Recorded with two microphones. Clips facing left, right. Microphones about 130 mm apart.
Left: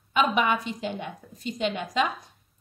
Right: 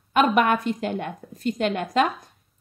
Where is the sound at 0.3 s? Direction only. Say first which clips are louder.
Right 5 dB; 50° right (ahead or behind).